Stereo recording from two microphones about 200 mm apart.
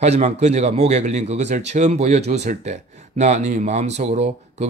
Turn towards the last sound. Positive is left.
turn(degrees=-30)  # may be behind; listen again after turning